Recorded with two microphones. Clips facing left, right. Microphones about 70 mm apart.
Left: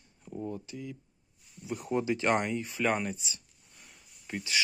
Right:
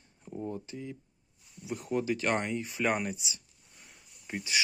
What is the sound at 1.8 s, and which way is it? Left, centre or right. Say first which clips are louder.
Speech: left 2 dB; left.